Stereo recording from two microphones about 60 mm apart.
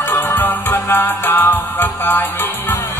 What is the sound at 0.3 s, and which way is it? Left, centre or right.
Music, left.